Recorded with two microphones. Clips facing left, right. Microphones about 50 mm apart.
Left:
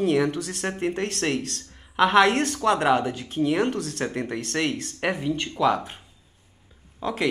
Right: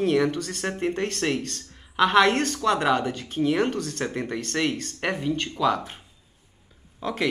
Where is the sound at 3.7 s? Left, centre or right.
Left.